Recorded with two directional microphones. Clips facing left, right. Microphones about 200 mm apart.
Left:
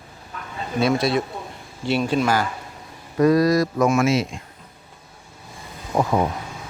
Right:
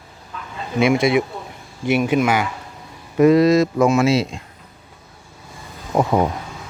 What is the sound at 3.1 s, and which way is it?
Speech, 25° right (ahead or behind).